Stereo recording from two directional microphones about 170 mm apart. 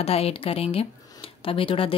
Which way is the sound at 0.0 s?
35° left (ahead or behind).